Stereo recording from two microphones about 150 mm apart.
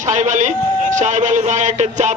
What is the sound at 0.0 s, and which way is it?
Music, 55° right (ahead or behind).